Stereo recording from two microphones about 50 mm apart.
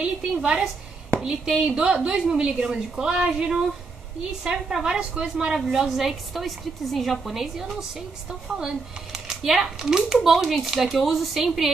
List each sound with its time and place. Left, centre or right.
0.0 s a woman's voice: centre